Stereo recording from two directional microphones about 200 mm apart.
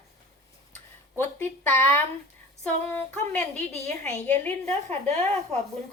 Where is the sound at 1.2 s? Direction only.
10° left (ahead or behind).